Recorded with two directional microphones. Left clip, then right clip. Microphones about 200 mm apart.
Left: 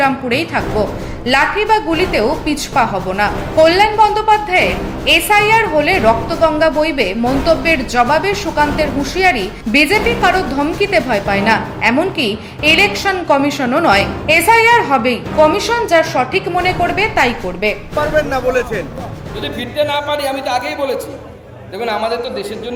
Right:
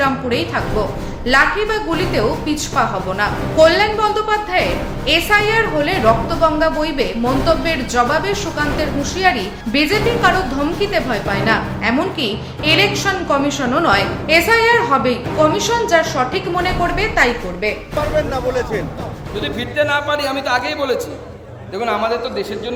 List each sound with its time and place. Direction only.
0.0 s a woman's voice: 20° left (ahead or behind)
19.7 s speech: centre (ahead or behind)